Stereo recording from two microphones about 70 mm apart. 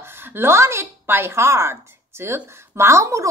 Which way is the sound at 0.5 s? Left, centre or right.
Right.